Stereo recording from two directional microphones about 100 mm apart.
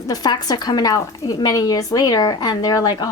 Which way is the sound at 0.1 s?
40° left (ahead or behind).